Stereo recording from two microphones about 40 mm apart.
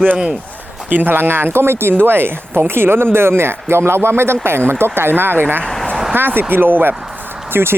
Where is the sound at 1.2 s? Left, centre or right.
Right.